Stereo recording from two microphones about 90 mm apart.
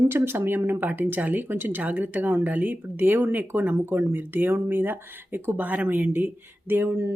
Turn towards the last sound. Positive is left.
turn(degrees=-25)  # may be behind; listen again after turning